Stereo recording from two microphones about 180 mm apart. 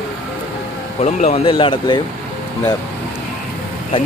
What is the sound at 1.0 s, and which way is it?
Speech, 35° left (ahead or behind).